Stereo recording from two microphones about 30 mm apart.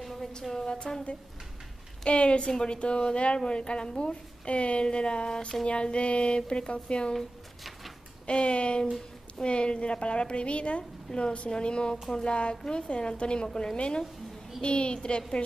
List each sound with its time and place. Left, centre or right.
0.0 s music: centre
0.3 s music: left
2.0 s a woman's voice: left
8.3 s a woman's voice: left
11.1 s a woman's voice: centre
11.5 s a woman's voice: left
12.1 s music: left
12.4 s a woman's voice: left